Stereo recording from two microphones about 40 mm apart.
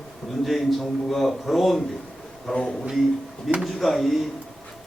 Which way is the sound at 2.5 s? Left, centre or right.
Centre.